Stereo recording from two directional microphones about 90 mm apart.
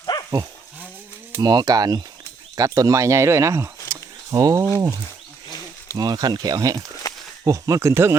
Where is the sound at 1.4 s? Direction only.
45° right (ahead or behind); by 3.7 s 30° right (ahead or behind).